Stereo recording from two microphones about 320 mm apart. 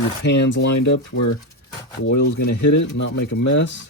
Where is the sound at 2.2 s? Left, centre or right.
Left.